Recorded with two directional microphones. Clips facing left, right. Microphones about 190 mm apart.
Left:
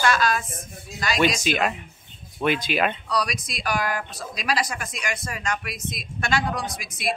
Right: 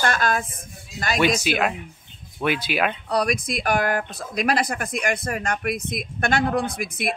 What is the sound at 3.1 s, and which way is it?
Speech, 55° right (ahead or behind).